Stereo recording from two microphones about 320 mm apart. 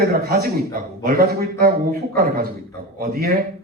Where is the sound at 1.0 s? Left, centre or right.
Right.